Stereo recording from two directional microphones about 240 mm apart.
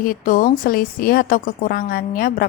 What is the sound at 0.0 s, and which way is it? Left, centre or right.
Speech, left.